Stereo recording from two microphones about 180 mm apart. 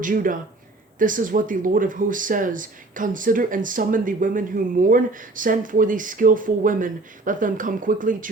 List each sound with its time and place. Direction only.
0.0 s speech: 50° right (ahead or behind)